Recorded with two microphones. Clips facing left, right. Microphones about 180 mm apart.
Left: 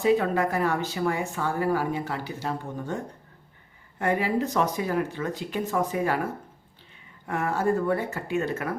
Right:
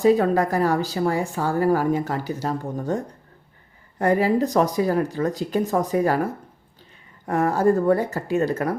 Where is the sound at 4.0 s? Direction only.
40° right (ahead or behind).